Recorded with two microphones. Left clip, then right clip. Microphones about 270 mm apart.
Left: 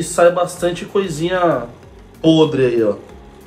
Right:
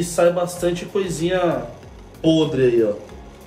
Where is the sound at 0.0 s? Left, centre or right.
Left.